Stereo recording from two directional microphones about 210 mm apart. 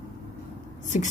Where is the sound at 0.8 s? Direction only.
35° left (ahead or behind).